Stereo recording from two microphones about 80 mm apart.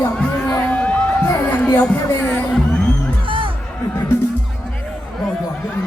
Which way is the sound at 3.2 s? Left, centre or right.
Right.